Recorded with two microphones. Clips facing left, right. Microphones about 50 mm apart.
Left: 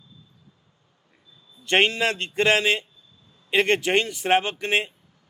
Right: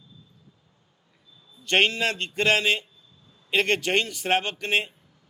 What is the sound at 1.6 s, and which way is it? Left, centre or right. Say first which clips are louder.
A man's voice: left 2 dB; centre.